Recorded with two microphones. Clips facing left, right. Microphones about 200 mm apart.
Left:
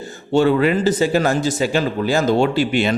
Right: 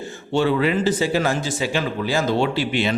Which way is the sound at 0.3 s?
45° left (ahead or behind).